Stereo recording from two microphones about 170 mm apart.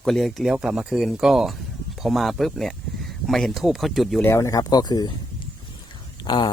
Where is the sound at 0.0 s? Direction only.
Centre (ahead or behind).